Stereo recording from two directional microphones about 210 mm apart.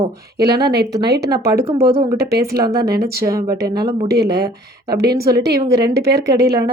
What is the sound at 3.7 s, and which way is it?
A woman's voice, 50° right (ahead or behind).